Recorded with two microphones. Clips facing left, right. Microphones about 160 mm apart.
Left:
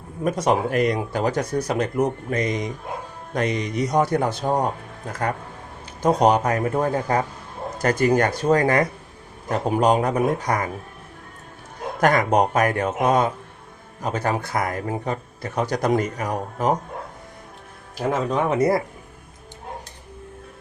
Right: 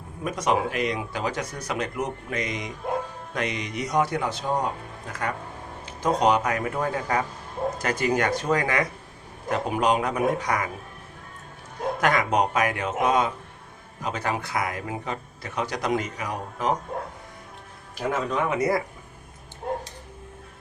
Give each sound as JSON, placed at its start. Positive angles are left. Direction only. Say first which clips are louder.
{"t": 0.3, "sound": "speech", "louder": "left 5 dB", "side_deg": 35}
{"t": 0.7, "sound": "speech", "louder": "left 6 dB", "side_deg": 45}
{"t": 6.0, "sound": "speech", "louder": "left 4 dB", "side_deg": 40}
{"t": 11.9, "sound": "speech", "louder": "left 5 dB", "side_deg": 40}
{"t": 17.9, "sound": "speech", "louder": "left 4 dB", "side_deg": 30}